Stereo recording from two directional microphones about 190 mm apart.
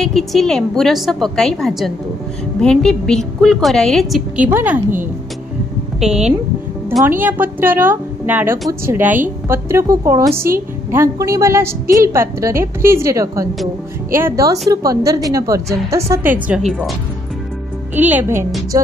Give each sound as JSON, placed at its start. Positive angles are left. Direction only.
{"t": 0.0, "sound": "a woman's voice", "side_deg": 0}
{"t": 5.9, "sound": "a woman's voice", "side_deg": -5}
{"t": 17.9, "sound": "a woman's voice", "side_deg": -10}